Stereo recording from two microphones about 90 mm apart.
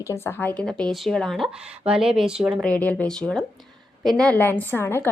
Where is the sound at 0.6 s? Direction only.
10° left (ahead or behind).